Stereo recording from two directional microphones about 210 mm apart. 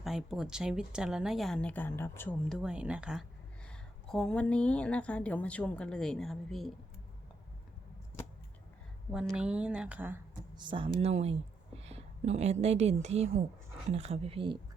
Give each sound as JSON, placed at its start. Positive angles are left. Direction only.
{"t": 0.0, "sound": "speech", "side_deg": 0}
{"t": 9.1, "sound": "speech", "side_deg": -5}
{"t": 10.5, "sound": "speech", "side_deg": -20}
{"t": 11.8, "sound": "a sound", "side_deg": -30}
{"t": 12.6, "sound": "a woman's voice", "side_deg": -30}